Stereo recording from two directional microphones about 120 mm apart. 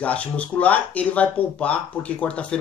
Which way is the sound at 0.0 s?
10° left (ahead or behind).